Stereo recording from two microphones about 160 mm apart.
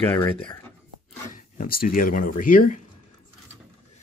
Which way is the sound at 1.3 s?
55° left (ahead or behind).